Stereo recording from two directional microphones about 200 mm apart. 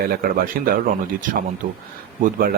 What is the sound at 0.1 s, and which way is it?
A man's voice, 50° right (ahead or behind).